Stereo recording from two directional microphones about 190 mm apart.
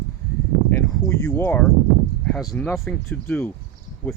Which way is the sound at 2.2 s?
5° left (ahead or behind).